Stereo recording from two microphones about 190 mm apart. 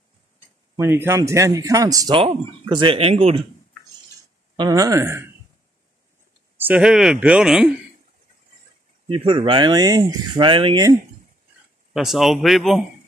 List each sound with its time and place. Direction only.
0.7 s speech: 10° right (ahead or behind); by 3.4 s 30° right (ahead or behind)
4.6 s speech: 20° right (ahead or behind)
6.6 s speech: 5° right (ahead or behind)
9.1 s speech: 30° right (ahead or behind)
11.9 s speech: centre (ahead or behind)